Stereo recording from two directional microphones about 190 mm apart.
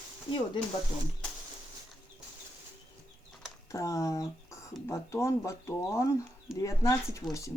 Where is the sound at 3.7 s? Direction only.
15° left (ahead or behind).